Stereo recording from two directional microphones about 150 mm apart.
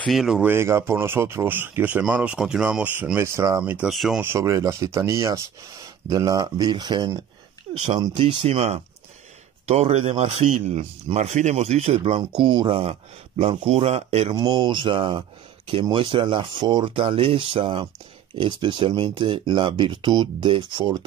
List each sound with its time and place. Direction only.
0.0 s speech: centre (ahead or behind)
0.4 s speech: 15° right (ahead or behind)
3.9 s speech: centre (ahead or behind)
4.2 s speech: 20° right (ahead or behind)
8.3 s speech: 40° right (ahead or behind)